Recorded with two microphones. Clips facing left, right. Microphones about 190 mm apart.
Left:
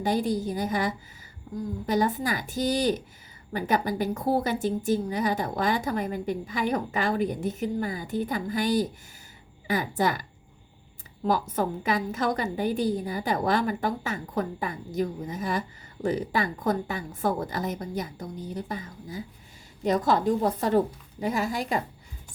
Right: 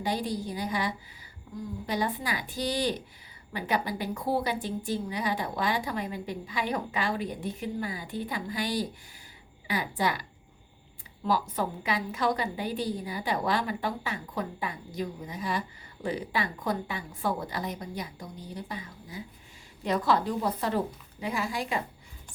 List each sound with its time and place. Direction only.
0.0 s a woman's voice: 45° left (ahead or behind)
11.3 s a woman's voice: 45° left (ahead or behind)